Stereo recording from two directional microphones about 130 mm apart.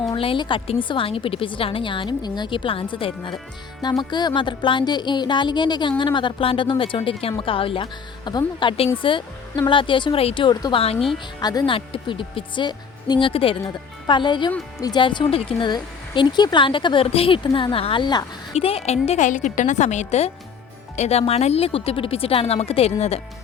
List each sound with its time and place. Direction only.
0.1 s speech: 40° left (ahead or behind)
18.5 s a woman's voice: 50° left (ahead or behind)